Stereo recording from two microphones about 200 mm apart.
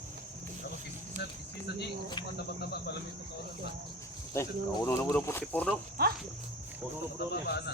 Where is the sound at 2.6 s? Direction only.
55° left (ahead or behind).